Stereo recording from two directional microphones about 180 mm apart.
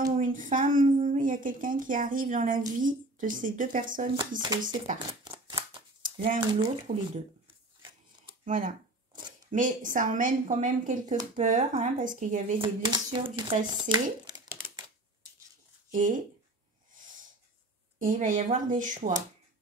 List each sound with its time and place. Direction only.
0.2 s a woman's voice: 45° right (ahead or behind)
4.4 s speech: 25° right (ahead or behind)
4.9 s a sound: 25° right (ahead or behind)
6.2 s speech: 30° right (ahead or behind)
8.5 s speech: 45° right (ahead or behind)
12.5 s speech: 25° right (ahead or behind)
15.9 s speech: 45° right (ahead or behind)
17.9 s a woman's voice: 45° right (ahead or behind)